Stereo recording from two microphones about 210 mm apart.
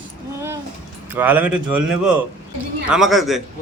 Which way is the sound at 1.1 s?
10° right (ahead or behind).